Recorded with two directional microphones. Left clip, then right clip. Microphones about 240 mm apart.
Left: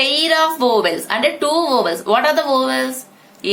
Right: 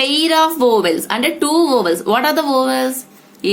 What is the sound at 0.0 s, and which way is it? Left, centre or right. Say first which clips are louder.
Speech: right 1 dB; right.